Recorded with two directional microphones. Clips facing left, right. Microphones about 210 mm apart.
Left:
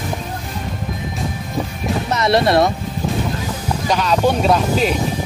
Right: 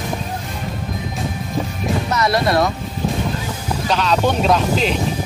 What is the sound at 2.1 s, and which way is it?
Speech, 25° left (ahead or behind).